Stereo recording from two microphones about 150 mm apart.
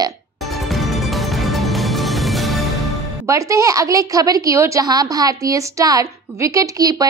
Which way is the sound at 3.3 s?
20° right (ahead or behind).